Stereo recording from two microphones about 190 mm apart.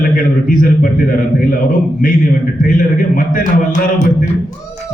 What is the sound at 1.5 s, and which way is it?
Music, 45° left (ahead or behind).